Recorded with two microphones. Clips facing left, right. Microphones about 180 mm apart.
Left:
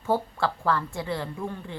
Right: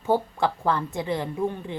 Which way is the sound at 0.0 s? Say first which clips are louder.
Right 3 dB; 15° right (ahead or behind).